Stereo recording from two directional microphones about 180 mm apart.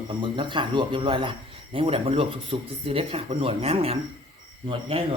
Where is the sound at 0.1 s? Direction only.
25° right (ahead or behind).